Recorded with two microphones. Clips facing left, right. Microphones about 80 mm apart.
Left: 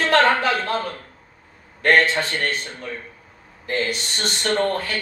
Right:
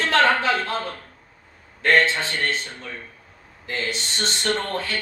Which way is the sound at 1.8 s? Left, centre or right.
Left.